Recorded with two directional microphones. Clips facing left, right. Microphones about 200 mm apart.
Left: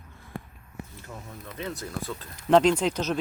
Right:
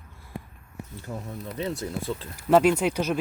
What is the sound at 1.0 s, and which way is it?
Speech, 35° right (ahead or behind).